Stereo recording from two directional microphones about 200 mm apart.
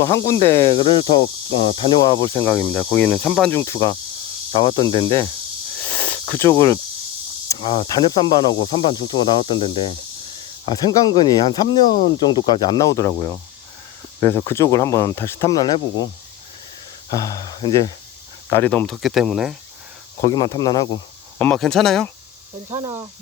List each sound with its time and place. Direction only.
0.0 s speech: 15° left (ahead or behind)
3.6 s speech: 20° left (ahead or behind)
5.9 s cricket: 5° left (ahead or behind)
7.4 s speech: 20° left (ahead or behind)
17.1 s speech: 20° left (ahead or behind)
18.5 s speech: 10° left (ahead or behind)
20.2 s speech: 20° left (ahead or behind)
21.3 s speech: 5° left (ahead or behind)
22.7 s speech: 30° right (ahead or behind)